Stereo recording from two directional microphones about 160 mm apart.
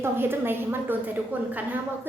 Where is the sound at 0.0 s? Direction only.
15° right (ahead or behind).